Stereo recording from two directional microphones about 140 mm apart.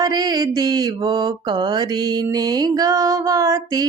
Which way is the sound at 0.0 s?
30° right (ahead or behind).